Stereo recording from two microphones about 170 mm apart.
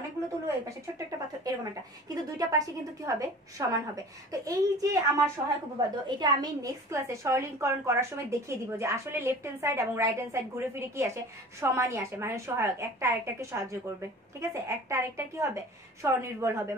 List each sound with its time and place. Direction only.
0.9 s a woman's voice: 20° right (ahead or behind)